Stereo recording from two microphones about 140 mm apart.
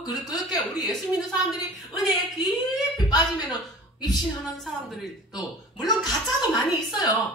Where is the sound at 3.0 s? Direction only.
30° left (ahead or behind).